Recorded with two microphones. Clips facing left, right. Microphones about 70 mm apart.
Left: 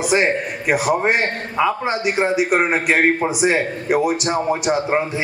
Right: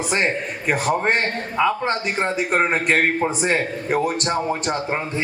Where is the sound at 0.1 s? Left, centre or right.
Centre.